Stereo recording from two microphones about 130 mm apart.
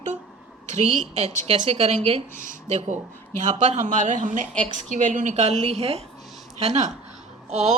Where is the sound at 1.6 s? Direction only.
55° right (ahead or behind).